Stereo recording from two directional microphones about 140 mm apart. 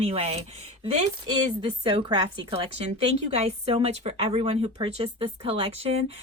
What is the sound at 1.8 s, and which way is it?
A woman's voice, 40° right (ahead or behind).